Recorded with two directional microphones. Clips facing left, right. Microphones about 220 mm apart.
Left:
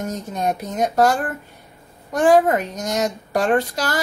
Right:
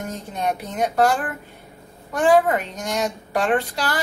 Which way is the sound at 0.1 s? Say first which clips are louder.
Left 2 dB; 40° left (ahead or behind).